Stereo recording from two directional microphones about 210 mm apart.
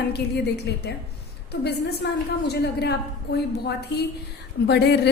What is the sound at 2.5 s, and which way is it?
A woman's voice, 50° left (ahead or behind).